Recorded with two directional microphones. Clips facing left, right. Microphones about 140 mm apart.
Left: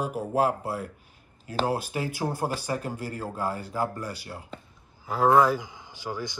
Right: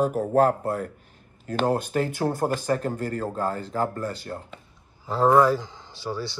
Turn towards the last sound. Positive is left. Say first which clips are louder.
# right 3 dB
turn(degrees=15)  # may be behind; listen again after turning